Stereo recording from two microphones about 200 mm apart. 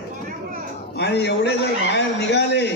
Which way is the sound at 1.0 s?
55° left (ahead or behind).